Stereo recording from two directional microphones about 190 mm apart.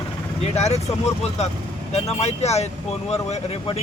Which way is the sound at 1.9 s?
35° left (ahead or behind).